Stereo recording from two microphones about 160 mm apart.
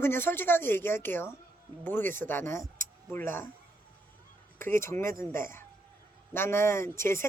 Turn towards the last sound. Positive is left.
turn(degrees=15)  # may be behind; listen again after turning